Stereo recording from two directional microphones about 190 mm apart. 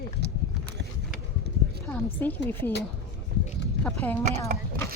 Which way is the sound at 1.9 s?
10° left (ahead or behind).